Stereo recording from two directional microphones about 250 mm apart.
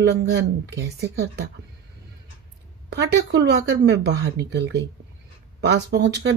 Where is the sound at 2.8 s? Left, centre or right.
Right.